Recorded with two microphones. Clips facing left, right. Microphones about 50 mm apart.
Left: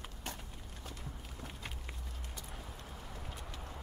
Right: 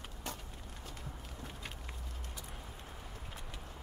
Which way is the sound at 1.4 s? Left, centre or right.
Centre.